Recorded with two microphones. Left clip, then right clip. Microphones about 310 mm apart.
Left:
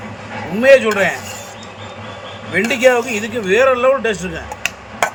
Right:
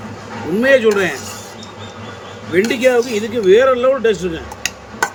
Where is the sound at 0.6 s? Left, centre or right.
Centre.